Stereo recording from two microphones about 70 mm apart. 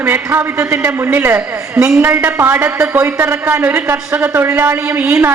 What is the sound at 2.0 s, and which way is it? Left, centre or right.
A man's voice, right.